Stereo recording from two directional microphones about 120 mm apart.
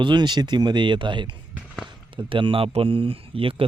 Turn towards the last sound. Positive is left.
turn(degrees=-50)  # may be behind; listen again after turning